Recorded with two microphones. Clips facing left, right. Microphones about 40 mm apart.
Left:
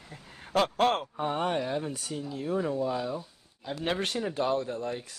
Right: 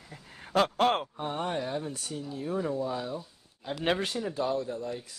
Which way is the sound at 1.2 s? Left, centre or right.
Left.